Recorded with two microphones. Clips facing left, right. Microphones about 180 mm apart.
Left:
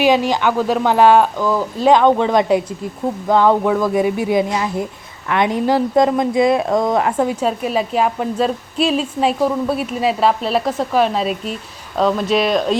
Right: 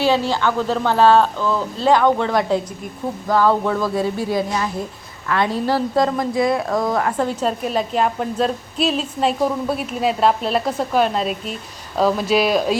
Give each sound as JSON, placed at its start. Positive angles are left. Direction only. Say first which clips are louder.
{"t": 0.0, "sound": "speech", "louder": "left 3 dB", "side_deg": 15}
{"t": 7.2, "sound": "a woman's voice", "louder": "left 3 dB", "side_deg": 10}